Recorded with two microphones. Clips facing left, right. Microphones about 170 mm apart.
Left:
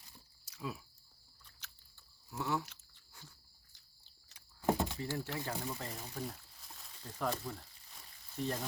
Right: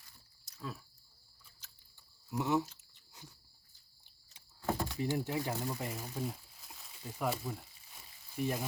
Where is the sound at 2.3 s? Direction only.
20° right (ahead or behind).